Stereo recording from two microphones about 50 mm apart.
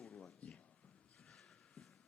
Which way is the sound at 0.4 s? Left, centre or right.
Left.